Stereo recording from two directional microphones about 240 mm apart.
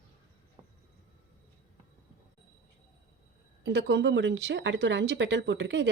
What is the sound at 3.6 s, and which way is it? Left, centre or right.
Speech, right.